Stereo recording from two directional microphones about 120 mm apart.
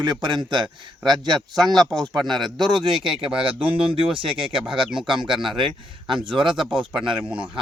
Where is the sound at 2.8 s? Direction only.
40° right (ahead or behind).